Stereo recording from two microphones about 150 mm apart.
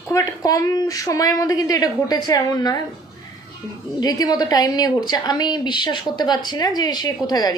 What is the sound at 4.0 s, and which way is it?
Speech, 25° left (ahead or behind).